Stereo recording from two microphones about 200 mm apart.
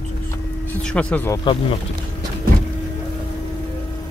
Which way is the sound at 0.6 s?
5° left (ahead or behind).